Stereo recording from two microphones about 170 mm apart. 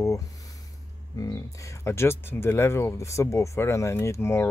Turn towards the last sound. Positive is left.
turn(degrees=15)  # may be behind; listen again after turning